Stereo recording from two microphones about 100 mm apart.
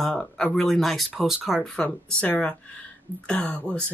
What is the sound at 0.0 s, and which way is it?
Speech, 10° left (ahead or behind).